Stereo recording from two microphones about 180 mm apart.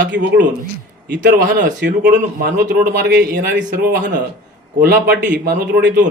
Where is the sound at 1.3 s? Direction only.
45° right (ahead or behind).